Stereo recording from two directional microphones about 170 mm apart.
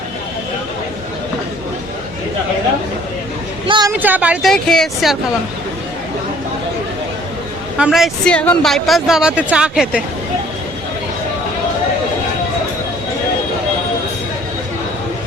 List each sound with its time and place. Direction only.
3.7 s a sound: 25° right (ahead or behind)
4.0 s speech: 10° right (ahead or behind)
4.5 s speech: 5° left (ahead or behind)
7.8 s speech: centre (ahead or behind)